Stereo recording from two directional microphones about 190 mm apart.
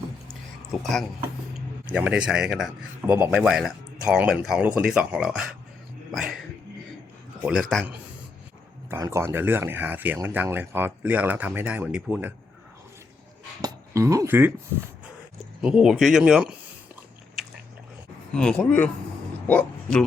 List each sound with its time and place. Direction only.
1.9 s a man's voice: 5° right (ahead or behind)
7.4 s a man's voice: 5° right (ahead or behind)
8.9 s speech: 15° right (ahead or behind)
13.6 s speech: 20° right (ahead or behind)
15.6 s a man's voice: 5° right (ahead or behind)
18.3 s a man's voice: 5° left (ahead or behind)